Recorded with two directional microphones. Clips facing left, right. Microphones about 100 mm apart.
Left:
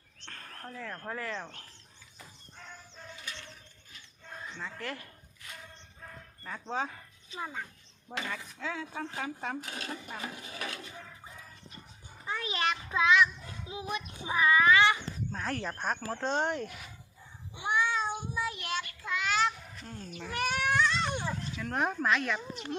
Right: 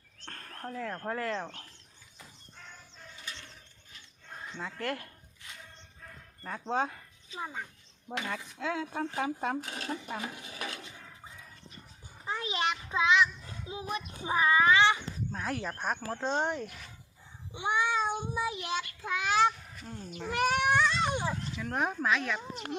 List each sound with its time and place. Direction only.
0.2 s a sound: 45° right (ahead or behind)
0.7 s speech: 40° right (ahead or behind)
4.8 s speech: 55° right (ahead or behind)
6.4 s speech: 45° right (ahead or behind)
7.3 s speech: 5° right (ahead or behind)
8.6 s speech: 50° right (ahead or behind)
9.5 s speech: 30° right (ahead or behind)
12.2 s a child's voice: 25° right (ahead or behind)
15.3 s speech: 5° right (ahead or behind)
17.5 s meow: 20° right (ahead or behind)
19.8 s speech: 5° right (ahead or behind)
20.3 s speech: 30° right (ahead or behind)
20.6 s baby cry: 15° right (ahead or behind)
21.6 s speech: centre (ahead or behind)